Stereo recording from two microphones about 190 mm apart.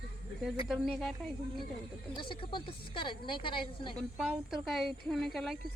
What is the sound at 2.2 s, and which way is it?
A woman's voice, 25° left (ahead or behind).